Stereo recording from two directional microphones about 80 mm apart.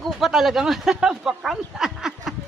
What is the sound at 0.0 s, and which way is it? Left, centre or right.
Speech, centre.